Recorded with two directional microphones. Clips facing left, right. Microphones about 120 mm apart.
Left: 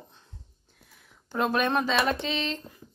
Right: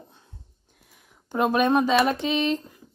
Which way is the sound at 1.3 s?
10° right (ahead or behind).